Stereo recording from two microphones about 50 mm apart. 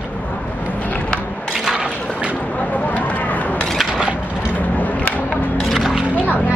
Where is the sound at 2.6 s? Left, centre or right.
Left.